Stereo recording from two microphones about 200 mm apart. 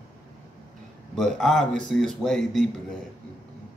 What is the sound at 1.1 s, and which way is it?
A man's voice, centre (ahead or behind).